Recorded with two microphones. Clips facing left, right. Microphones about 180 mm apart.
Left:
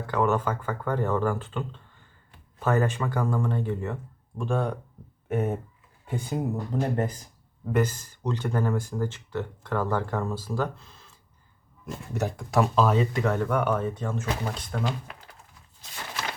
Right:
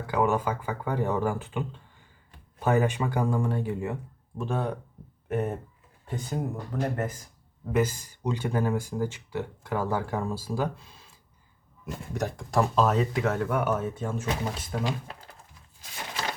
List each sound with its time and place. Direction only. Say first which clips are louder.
0.1 s speech: even; 10° right (ahead or behind); by 6.4 s 10° left (ahead or behind)
6.7 s speech: left 1 dB; 25° left (ahead or behind)
7.7 s speech: even; 10° right (ahead or behind)
12.1 s speech: left 1 dB; 5° left (ahead or behind)